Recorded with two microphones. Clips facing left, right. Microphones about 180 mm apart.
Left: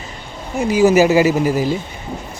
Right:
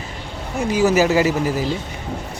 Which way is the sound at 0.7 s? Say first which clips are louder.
Left 4 dB; 15° left (ahead or behind).